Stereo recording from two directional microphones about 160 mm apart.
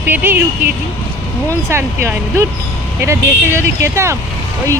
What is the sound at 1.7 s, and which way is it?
Speech, 15° right (ahead or behind).